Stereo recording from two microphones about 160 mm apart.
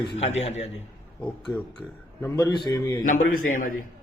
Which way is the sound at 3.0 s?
60° left (ahead or behind).